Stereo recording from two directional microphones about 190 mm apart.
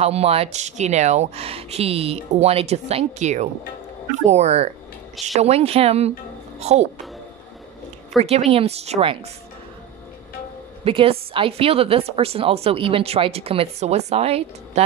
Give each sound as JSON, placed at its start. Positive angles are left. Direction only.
{"t": 0.0, "sound": "a woman's voice", "side_deg": -35}
{"t": 8.5, "sound": "a woman's voice", "side_deg": -30}
{"t": 10.8, "sound": "a woman's voice", "side_deg": -30}